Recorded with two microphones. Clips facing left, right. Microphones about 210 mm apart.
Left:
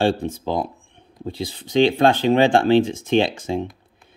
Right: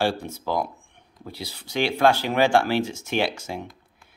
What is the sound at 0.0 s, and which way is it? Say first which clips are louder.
Speech: left 5 dB; 20° left (ahead or behind).